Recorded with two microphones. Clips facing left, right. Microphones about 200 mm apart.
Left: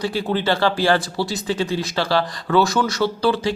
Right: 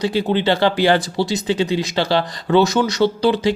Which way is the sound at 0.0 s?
20° right (ahead or behind).